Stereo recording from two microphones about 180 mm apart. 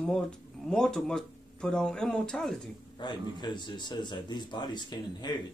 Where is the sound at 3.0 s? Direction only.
25° left (ahead or behind).